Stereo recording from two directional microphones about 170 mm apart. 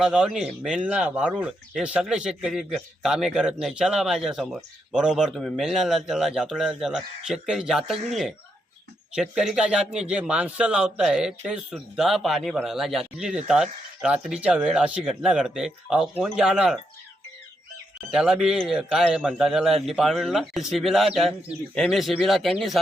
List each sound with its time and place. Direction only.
0.0 s speech: 5° right (ahead or behind)
9.1 s speech: 5° right (ahead or behind)
18.1 s speech: 5° right (ahead or behind)